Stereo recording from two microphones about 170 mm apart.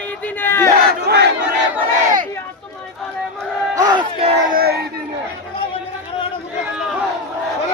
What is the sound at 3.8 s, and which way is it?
Battle cry, 25° right (ahead or behind).